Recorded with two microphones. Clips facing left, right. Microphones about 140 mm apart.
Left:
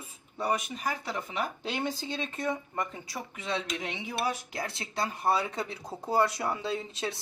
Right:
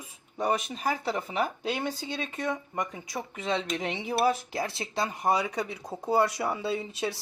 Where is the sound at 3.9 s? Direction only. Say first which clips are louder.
Right 9 dB; 30° right (ahead or behind).